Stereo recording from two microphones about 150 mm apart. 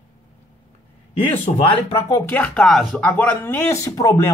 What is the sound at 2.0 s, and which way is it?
Speech, 20° left (ahead or behind).